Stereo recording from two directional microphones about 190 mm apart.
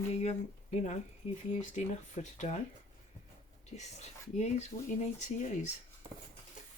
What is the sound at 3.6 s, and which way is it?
Speech, 35° left (ahead or behind).